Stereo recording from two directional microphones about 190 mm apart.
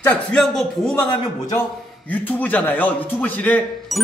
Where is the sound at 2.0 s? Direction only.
10° left (ahead or behind).